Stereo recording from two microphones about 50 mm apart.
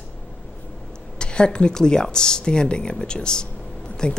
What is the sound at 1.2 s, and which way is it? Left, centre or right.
A woman's voice, centre.